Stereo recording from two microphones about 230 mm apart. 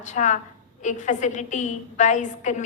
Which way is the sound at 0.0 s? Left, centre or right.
Left.